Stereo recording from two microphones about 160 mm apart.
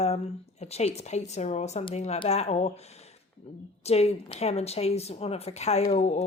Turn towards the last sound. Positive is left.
turn(degrees=45)  # may be behind; listen again after turning